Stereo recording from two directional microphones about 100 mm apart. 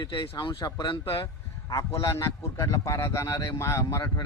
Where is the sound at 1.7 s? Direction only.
30° left (ahead or behind).